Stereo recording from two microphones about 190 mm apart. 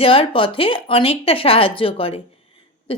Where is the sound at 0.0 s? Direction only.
30° left (ahead or behind).